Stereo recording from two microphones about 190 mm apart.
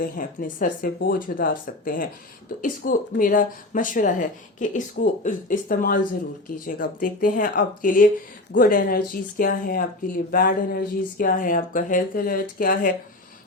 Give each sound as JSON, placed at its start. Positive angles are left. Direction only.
{"t": 0.0, "sound": "speech", "side_deg": 45}